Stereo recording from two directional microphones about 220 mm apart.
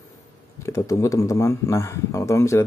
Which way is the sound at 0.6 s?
15° left (ahead or behind).